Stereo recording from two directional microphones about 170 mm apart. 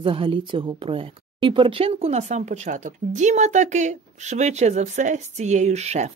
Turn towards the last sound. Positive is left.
turn(degrees=-40)  # may be behind; listen again after turning